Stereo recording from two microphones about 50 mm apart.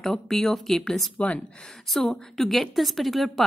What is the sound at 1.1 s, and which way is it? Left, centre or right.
Speech, left.